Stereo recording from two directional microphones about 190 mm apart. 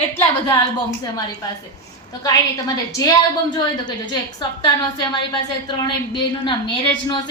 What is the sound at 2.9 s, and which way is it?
A woman's voice, 20° left (ahead or behind).